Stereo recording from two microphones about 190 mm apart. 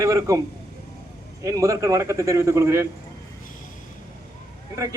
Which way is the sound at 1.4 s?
15° right (ahead or behind).